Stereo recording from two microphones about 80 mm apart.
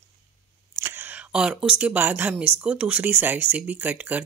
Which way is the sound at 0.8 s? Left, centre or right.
Right.